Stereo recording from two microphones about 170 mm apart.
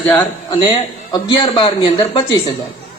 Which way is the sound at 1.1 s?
25° left (ahead or behind).